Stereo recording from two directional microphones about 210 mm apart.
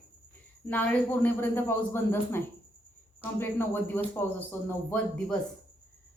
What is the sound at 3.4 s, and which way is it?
A woman's voice, 10° left (ahead or behind).